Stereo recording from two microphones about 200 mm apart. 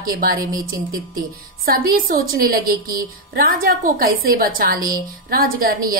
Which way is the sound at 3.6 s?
45° right (ahead or behind).